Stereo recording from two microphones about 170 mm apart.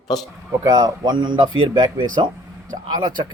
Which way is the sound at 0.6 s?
20° right (ahead or behind).